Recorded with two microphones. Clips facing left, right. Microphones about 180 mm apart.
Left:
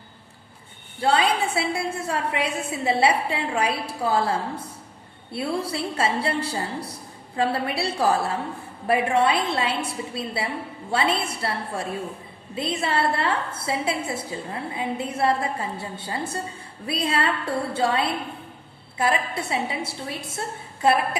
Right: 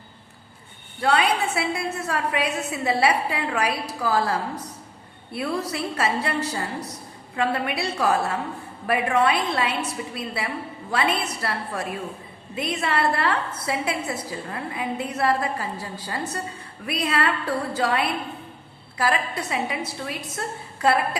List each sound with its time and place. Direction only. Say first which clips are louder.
1.0 s a woman's voice: even; 30° left (ahead or behind)